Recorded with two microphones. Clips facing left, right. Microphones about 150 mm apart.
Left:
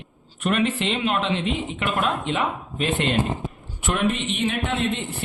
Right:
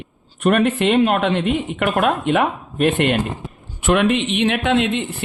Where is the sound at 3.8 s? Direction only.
85° right.